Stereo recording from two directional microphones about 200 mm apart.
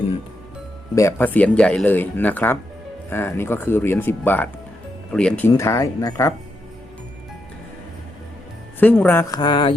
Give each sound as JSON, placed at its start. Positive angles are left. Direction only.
{"t": 0.9, "sound": "speech", "side_deg": 10}
{"t": 5.5, "sound": "speech", "side_deg": 15}
{"t": 8.8, "sound": "speech", "side_deg": 10}
{"t": 9.2, "sound": "speech", "side_deg": 20}